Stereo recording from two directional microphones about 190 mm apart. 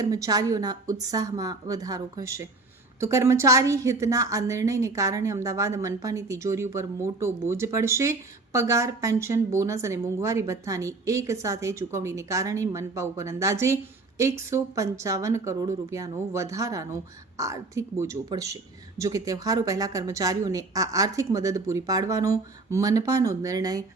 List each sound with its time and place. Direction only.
0.0 s a woman's voice: 20° right (ahead or behind)